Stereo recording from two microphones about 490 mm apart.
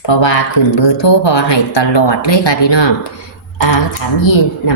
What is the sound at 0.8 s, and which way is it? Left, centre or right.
A woman's voice, left.